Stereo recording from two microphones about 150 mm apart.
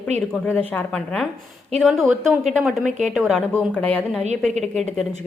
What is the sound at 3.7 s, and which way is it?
Speech, 10° left (ahead or behind).